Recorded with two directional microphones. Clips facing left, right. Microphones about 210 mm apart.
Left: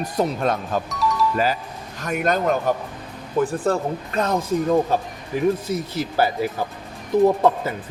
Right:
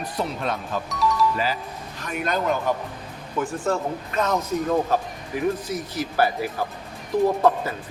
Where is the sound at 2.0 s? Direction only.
45° left (ahead or behind).